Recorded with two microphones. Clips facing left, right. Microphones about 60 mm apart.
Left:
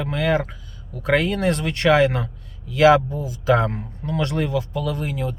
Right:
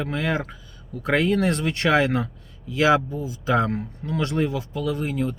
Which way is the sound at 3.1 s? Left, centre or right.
Right.